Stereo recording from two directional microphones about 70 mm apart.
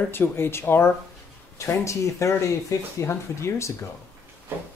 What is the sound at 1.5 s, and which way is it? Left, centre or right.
Speech, left.